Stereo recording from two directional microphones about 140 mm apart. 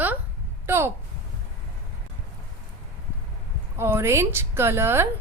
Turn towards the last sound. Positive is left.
turn(degrees=-15)  # may be behind; listen again after turning